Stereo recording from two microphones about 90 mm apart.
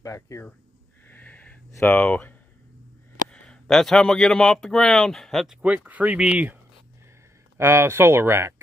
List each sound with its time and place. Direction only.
0.0 s speech: 35° left (ahead or behind)
1.0 s a sound: 20° left (ahead or behind)
3.3 s speech: 10° left (ahead or behind)
5.6 s speech: 15° right (ahead or behind)
7.5 s speech: 30° right (ahead or behind)